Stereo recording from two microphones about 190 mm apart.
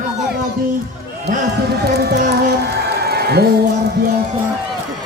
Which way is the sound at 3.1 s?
55° right (ahead or behind).